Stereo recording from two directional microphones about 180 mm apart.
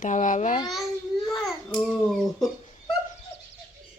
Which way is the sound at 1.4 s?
Centre (ahead or behind).